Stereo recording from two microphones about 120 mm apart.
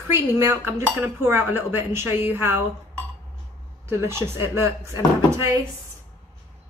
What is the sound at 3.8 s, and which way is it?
Speech, 20° right (ahead or behind).